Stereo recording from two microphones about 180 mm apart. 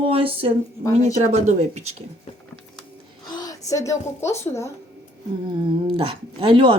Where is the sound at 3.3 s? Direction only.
20° left (ahead or behind).